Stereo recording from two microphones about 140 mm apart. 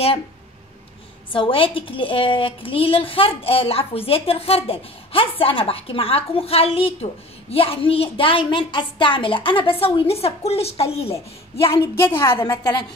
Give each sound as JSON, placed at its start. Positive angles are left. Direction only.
{"t": 1.3, "sound": "a woman's voice", "side_deg": 40}
{"t": 12.3, "sound": "a woman's voice", "side_deg": 35}